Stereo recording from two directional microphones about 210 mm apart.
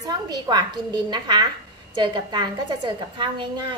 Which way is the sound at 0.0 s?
20° right (ahead or behind).